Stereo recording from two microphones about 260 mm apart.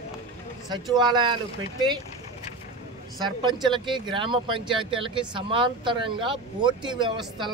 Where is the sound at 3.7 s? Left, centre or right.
Centre.